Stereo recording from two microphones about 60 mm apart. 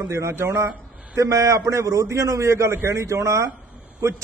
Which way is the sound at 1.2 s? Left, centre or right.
Right.